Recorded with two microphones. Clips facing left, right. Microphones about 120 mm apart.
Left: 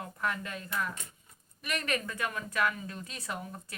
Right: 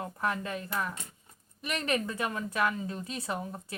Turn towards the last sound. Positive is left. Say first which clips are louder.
# right 4 dB
turn(degrees=-25)  # may be behind; listen again after turning